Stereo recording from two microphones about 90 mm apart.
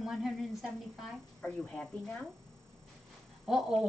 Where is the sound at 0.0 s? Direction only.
5° right (ahead or behind).